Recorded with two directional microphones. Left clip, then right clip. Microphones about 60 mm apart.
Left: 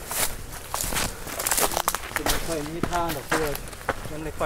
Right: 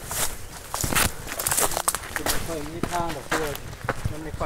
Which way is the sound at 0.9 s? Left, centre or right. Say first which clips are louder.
Right 6 dB; right.